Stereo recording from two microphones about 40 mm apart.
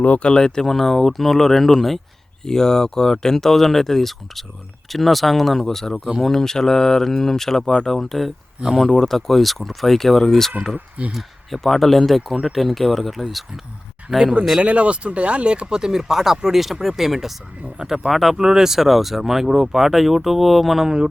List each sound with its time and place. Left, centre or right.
0.0 s speech: left
0.3 s speech: centre
8.6 s speech: centre
9.0 s speech: centre
14.6 s speech: right; by 18.1 s centre
18.1 s speech: centre
18.3 s speech: centre